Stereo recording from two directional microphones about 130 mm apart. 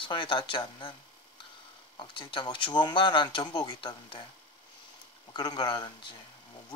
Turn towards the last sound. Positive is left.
turn(degrees=35)  # may be behind; listen again after turning